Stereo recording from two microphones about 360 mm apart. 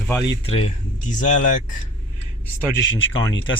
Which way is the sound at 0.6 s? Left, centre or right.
Left.